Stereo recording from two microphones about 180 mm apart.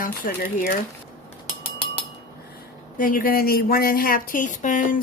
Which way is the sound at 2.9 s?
50° left (ahead or behind).